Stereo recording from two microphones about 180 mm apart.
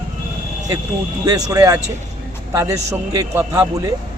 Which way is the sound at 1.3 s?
20° right (ahead or behind).